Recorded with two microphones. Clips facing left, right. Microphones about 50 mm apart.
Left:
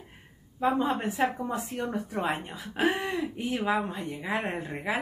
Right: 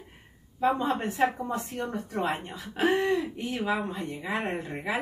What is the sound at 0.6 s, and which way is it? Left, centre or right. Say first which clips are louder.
Speech: even; centre.